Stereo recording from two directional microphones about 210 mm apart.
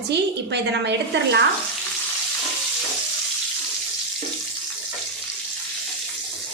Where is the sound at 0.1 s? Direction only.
55° right (ahead or behind).